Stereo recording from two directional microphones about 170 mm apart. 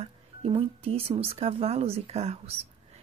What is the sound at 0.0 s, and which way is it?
Speech, 35° right (ahead or behind).